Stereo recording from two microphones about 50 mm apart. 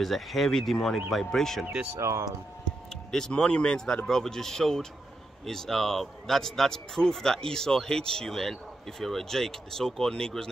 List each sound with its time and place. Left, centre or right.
0.0 s speech: centre
2.0 s speech: right
3.1 s speech: centre